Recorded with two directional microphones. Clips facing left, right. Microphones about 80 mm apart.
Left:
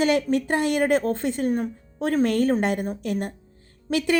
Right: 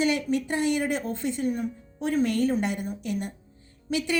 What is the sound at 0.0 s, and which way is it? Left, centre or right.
Speech, left.